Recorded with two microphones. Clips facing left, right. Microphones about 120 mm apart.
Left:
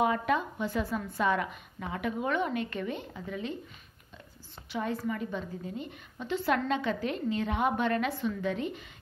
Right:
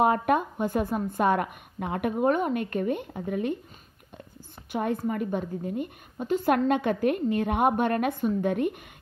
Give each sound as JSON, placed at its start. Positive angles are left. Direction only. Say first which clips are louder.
{"t": 0.0, "sound": "a woman's voice", "louder": "right 5 dB", "side_deg": -50}
{"t": 4.7, "sound": "a woman's voice", "louder": "right 5 dB", "side_deg": -50}